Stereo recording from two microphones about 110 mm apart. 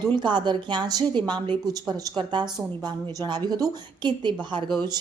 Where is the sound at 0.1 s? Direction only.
45° right (ahead or behind).